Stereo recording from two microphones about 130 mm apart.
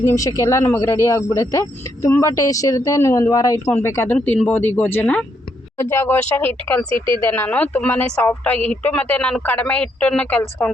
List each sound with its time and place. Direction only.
0.0 s speech: 25° left (ahead or behind)
6.9 s speech: 40° right (ahead or behind)
7.3 s speech: 15° left (ahead or behind)